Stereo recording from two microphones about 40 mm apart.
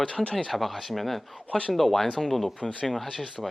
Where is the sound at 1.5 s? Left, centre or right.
Left.